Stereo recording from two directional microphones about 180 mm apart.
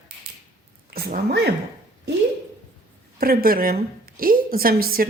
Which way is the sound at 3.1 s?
55° right (ahead or behind).